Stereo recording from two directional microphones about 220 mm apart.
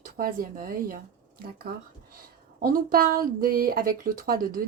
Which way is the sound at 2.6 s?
40° right (ahead or behind).